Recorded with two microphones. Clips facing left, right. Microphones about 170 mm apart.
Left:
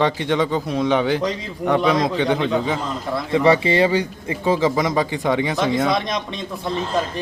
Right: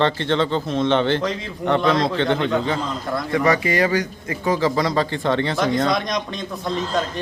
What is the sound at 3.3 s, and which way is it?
A man's voice, 25° left (ahead or behind).